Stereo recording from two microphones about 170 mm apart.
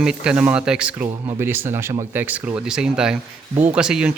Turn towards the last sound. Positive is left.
turn(degrees=-5)  # may be behind; listen again after turning